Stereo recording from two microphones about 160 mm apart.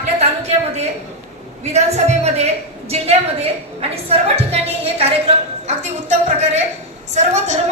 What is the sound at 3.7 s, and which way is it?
A woman's voice, 40° right (ahead or behind).